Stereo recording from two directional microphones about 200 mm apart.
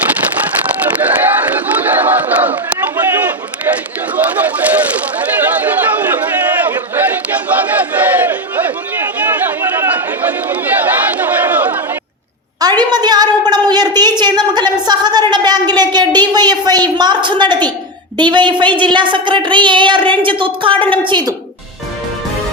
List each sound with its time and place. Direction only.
1.0 s battle cry: 10° right (ahead or behind)
3.1 s run: 10° right (ahead or behind)
4.1 s a sound: 10° right (ahead or behind)
5.6 s chatter: 10° right (ahead or behind)
6.7 s battle cry: 10° right (ahead or behind)
12.5 s a sound: 20° right (ahead or behind)
18.2 s a woman's voice: 20° right (ahead or behind)